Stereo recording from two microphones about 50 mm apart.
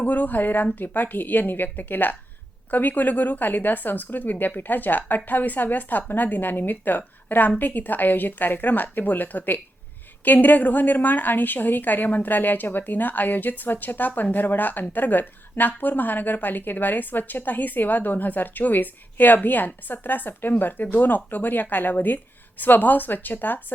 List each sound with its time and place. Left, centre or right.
0.0 s a woman's voice: left